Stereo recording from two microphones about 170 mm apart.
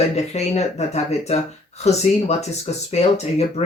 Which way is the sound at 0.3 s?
40° left (ahead or behind).